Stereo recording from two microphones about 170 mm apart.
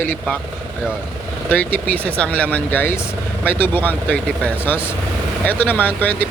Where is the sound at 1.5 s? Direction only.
10° left (ahead or behind).